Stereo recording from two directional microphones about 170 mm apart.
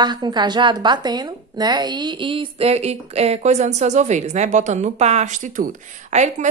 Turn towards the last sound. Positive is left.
turn(degrees=-45)  # may be behind; listen again after turning